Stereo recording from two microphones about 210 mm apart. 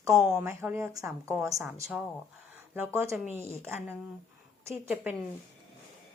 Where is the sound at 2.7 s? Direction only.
10° right (ahead or behind).